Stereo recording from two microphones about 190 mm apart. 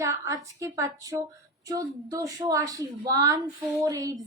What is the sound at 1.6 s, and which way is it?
A woman's voice, 20° right (ahead or behind).